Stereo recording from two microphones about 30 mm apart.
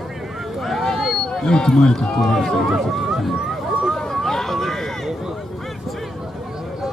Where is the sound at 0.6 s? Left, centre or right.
Centre.